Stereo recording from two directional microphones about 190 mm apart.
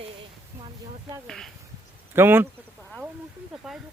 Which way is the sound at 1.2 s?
5° left (ahead or behind).